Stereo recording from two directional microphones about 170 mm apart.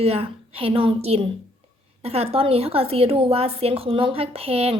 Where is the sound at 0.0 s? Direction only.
35° right (ahead or behind).